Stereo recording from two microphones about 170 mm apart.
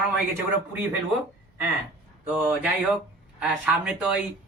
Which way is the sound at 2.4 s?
10° right (ahead or behind).